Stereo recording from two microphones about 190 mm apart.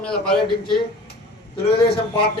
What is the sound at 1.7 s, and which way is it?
Speech, 55° left (ahead or behind).